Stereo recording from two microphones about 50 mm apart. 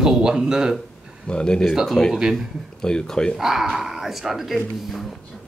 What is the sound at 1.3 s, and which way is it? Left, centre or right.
Speech, centre.